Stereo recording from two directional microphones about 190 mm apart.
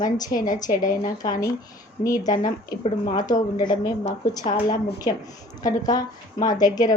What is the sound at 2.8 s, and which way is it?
Speech, 30° left (ahead or behind).